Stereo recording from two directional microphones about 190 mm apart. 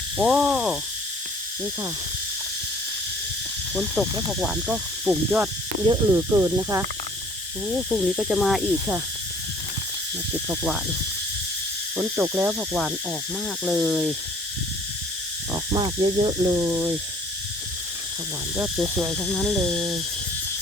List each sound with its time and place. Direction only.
0.2 s speech: 5° right (ahead or behind)
3.8 s speech: centre (ahead or behind)
5.8 s speech: 20° right (ahead or behind)
7.7 s speech: centre (ahead or behind)
10.5 s owl: 10° right (ahead or behind)
11.9 s owl: 10° right (ahead or behind)
13.7 s speech: centre (ahead or behind)
15.5 s speech: 25° right (ahead or behind)
18.5 s owl: 5° right (ahead or behind); by 20.0 s 20° right (ahead or behind)